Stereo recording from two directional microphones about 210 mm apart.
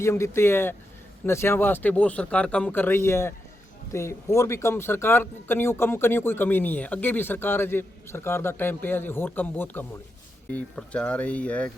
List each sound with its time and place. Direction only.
0.0 s speech: 15° left (ahead or behind)